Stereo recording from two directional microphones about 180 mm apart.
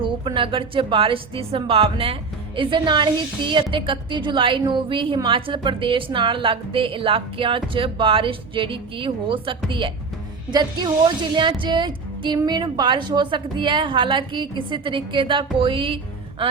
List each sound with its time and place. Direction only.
0.0 s a woman's voice: 30° right (ahead or behind)